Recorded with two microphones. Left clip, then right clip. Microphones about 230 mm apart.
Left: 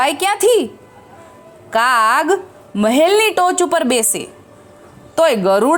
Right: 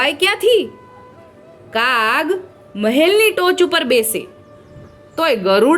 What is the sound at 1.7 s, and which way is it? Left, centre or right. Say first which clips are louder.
A woman's voice: left 3 dB; left.